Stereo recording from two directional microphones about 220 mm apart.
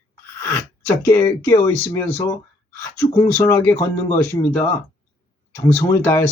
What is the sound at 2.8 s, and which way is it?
Speech, 10° left (ahead or behind).